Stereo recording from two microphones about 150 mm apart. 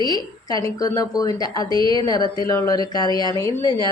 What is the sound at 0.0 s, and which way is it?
A woman's voice, 25° left (ahead or behind).